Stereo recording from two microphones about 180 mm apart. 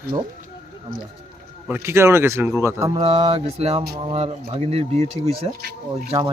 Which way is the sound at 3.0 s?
30° right (ahead or behind).